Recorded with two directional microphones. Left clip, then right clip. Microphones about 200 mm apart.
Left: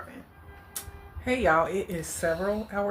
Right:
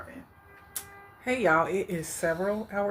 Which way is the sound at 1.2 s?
20° right (ahead or behind).